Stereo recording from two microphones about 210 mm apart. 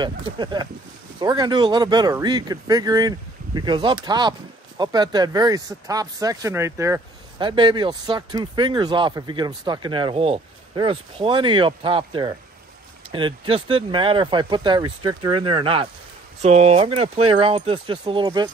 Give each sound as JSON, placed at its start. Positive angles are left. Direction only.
{"t": 0.0, "sound": "speech", "side_deg": -20}